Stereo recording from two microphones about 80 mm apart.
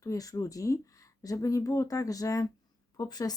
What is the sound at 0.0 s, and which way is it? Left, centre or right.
Speech, left.